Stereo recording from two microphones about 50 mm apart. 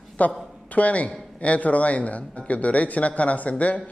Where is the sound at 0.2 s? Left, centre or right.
Left.